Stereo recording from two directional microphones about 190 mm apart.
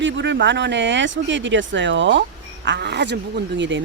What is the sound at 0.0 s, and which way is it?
Speech, 70° right (ahead or behind).